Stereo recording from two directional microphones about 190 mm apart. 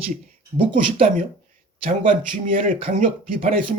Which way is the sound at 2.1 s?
45° right (ahead or behind).